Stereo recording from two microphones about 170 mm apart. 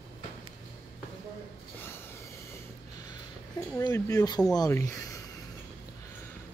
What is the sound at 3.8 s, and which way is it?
Speech, 20° left (ahead or behind).